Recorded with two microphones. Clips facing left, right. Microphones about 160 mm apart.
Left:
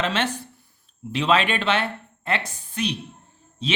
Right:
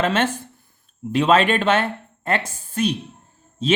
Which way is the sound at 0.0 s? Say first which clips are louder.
Right 4 dB; 50° right (ahead or behind).